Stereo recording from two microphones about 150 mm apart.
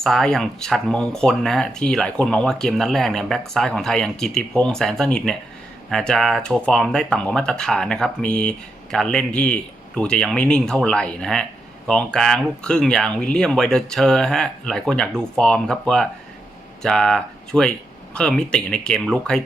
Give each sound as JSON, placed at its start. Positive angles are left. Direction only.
{"t": 0.0, "sound": "speech", "side_deg": 5}